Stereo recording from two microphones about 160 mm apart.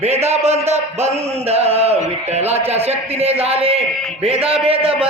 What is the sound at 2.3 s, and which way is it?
Mantra, 40° right (ahead or behind).